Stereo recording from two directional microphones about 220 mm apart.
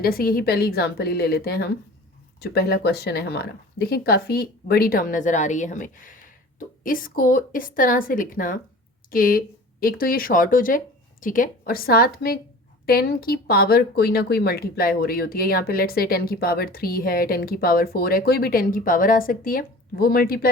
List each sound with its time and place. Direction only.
0.0 s speech: 40° left (ahead or behind)